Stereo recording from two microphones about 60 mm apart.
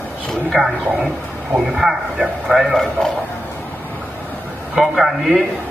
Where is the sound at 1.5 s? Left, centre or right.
Centre.